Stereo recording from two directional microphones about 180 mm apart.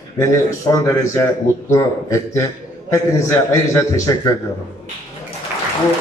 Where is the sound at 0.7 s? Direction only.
20° left (ahead or behind).